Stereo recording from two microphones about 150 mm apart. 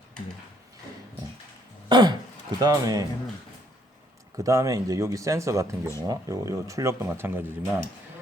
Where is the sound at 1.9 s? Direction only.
30° right (ahead or behind).